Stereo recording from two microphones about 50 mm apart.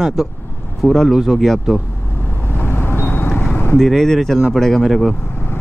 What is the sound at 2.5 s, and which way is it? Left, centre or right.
Vehicle, left.